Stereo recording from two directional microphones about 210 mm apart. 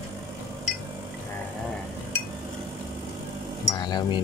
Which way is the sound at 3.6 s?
20° left (ahead or behind).